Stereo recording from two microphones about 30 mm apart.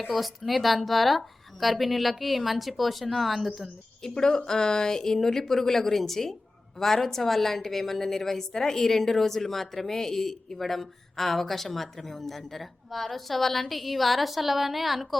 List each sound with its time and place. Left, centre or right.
0.1 s a woman's voice: centre
4.1 s a woman's voice: left; by 15.2 s centre